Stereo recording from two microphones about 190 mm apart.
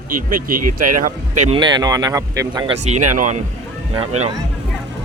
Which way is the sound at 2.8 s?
35° right (ahead or behind).